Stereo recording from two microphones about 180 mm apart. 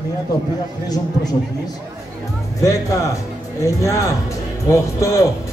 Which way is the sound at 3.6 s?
15° left (ahead or behind).